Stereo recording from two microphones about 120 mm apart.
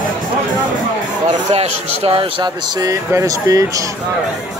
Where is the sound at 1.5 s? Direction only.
55° right (ahead or behind).